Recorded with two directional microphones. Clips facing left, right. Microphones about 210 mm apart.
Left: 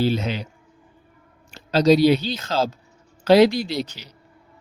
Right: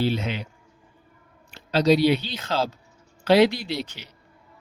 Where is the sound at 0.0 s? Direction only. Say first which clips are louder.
Left 3 dB; 40° left (ahead or behind).